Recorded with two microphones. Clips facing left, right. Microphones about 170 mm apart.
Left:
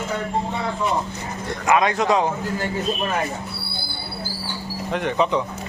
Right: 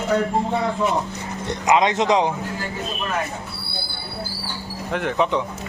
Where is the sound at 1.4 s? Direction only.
20° right (ahead or behind).